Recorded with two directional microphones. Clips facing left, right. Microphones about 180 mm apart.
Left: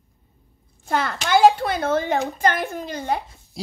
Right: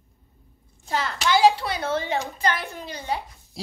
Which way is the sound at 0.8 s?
55° left (ahead or behind).